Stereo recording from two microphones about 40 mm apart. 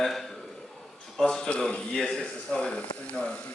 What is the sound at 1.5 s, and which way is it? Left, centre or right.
A man's voice, left.